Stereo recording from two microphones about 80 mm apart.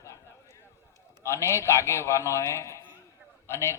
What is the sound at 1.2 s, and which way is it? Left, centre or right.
A man's voice, left.